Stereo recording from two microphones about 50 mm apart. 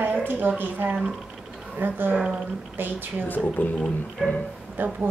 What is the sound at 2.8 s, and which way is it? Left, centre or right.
Speech, right.